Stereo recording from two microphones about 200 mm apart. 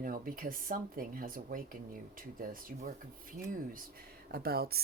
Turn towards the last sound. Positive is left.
turn(degrees=-50)  # may be behind; listen again after turning